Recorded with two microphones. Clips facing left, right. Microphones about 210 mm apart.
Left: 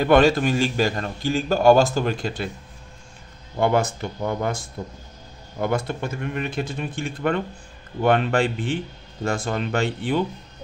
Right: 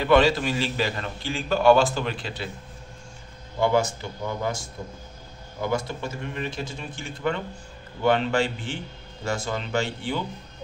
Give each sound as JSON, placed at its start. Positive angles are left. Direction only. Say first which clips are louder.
{"t": 0.0, "sound": "a man's voice", "louder": "left 3 dB", "side_deg": 50}
{"t": 3.5, "sound": "speech", "louder": "left 2 dB", "side_deg": 55}